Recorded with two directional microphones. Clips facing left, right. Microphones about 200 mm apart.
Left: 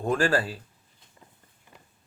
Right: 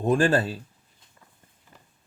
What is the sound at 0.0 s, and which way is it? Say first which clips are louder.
Speech: right 3 dB; 20° right (ahead or behind).